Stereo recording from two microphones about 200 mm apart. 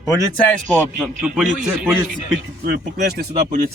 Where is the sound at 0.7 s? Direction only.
10° left (ahead or behind).